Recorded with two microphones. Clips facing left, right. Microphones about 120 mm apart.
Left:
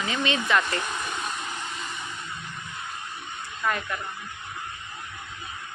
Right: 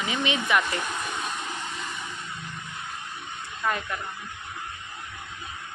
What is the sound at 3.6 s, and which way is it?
Speech, 20° right (ahead or behind).